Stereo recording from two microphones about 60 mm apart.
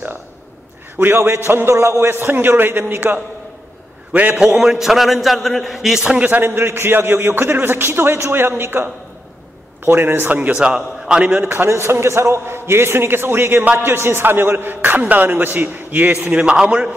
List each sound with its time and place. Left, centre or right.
0.9 s a man's voice: right
4.6 s a man's voice: centre
6.0 s a man's voice: right
10.6 s a man's voice: centre
11.4 s a man's voice: right
16.3 s a man's voice: centre